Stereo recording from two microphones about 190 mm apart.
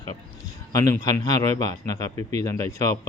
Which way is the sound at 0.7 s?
15° left (ahead or behind).